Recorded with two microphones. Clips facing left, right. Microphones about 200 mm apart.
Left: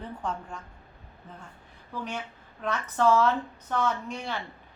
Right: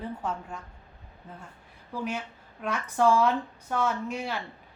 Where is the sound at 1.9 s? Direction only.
10° right (ahead or behind).